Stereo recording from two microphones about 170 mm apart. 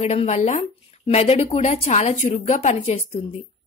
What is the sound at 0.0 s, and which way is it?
Speech, 40° left (ahead or behind).